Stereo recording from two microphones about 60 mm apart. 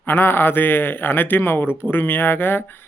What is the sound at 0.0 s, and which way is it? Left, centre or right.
Speech, left.